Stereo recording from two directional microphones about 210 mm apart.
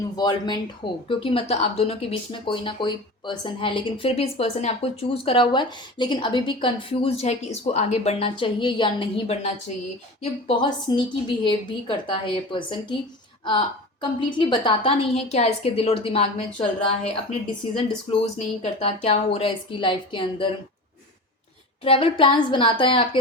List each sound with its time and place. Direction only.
0.2 s speech: 20° left (ahead or behind)
21.8 s speech: 25° left (ahead or behind)